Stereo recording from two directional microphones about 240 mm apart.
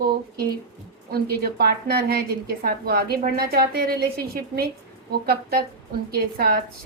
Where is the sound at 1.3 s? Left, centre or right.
Right.